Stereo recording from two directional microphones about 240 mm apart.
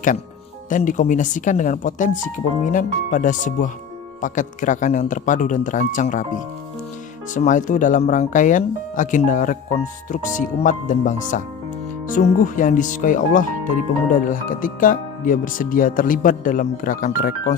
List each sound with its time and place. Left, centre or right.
0.7 s speech: left